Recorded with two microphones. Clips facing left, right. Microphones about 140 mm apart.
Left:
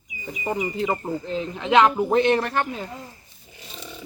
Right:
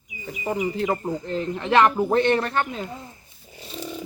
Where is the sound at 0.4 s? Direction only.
5° right (ahead or behind).